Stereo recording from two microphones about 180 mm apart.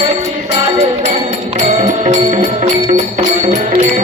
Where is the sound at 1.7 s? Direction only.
40° right (ahead or behind).